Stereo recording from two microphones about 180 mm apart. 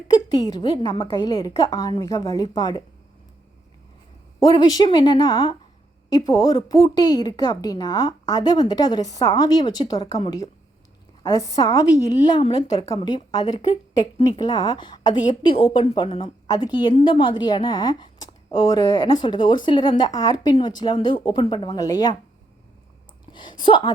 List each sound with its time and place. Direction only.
0.5 s a woman's voice: 20° left (ahead or behind)
4.4 s a woman's voice: 20° left (ahead or behind)
23.3 s a woman's voice: 25° left (ahead or behind)